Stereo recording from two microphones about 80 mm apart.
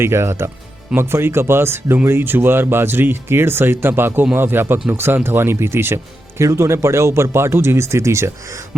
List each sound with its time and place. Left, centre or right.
0.0 s speech: right